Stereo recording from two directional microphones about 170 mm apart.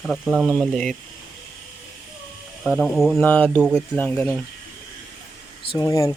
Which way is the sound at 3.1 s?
10° left (ahead or behind).